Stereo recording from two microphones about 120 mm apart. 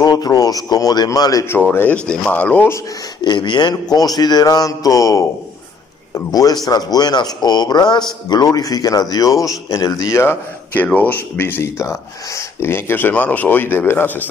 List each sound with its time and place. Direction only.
0.0 s speech: 35° left (ahead or behind)
1.7 s speech: 15° left (ahead or behind)
3.2 s speech: 35° left (ahead or behind); by 14.2 s 15° left (ahead or behind)